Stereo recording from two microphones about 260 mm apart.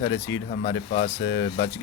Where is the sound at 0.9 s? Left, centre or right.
Left.